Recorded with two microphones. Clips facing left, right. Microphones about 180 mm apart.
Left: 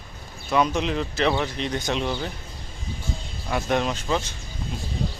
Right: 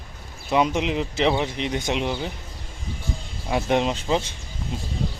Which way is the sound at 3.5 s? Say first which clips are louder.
Right 2 dB; 20° right (ahead or behind).